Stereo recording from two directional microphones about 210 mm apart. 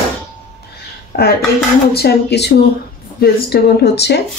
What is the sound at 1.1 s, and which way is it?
Speech, 45° left (ahead or behind).